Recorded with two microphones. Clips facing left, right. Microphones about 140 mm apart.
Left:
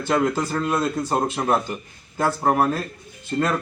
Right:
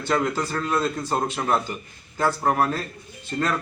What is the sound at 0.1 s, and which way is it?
Speech, 15° left (ahead or behind).